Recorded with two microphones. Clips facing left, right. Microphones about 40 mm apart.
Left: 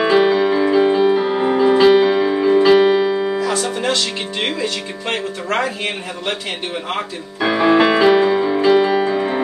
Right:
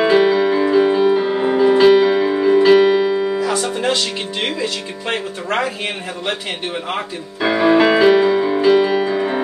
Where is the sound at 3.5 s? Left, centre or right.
Right.